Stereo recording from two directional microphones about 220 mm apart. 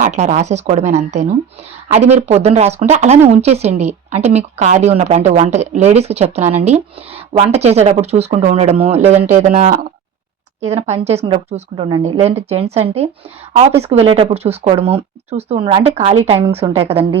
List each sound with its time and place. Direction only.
0.0 s a woman's voice: 35° right (ahead or behind)